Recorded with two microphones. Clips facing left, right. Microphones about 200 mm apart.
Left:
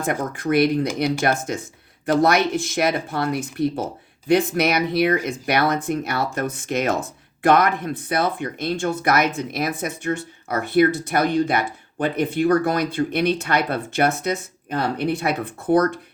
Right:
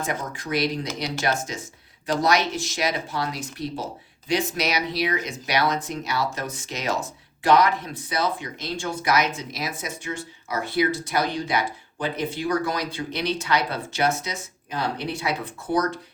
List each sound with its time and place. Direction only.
0.0 s speech: 55° left (ahead or behind)